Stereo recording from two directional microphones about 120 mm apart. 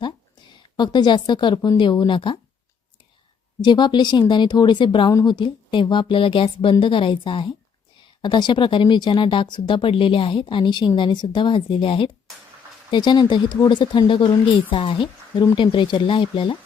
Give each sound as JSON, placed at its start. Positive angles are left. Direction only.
{"t": 0.8, "sound": "speech", "side_deg": 35}
{"t": 3.6, "sound": "speech", "side_deg": 40}